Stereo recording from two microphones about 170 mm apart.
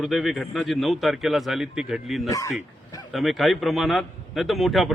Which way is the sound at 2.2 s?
20° left (ahead or behind).